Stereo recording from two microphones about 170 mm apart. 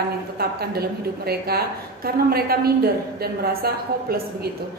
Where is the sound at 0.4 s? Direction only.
65° right (ahead or behind).